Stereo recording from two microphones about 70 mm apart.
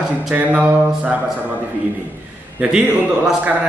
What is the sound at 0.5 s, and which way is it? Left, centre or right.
Speech, right.